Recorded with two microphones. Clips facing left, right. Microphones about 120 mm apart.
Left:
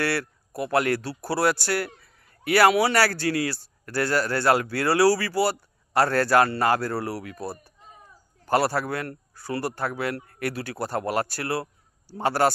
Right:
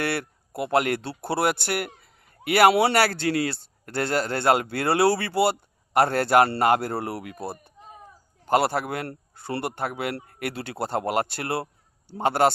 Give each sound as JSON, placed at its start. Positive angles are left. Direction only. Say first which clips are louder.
{"t": 0.0, "sound": "speech", "louder": "left 1 dB", "side_deg": -20}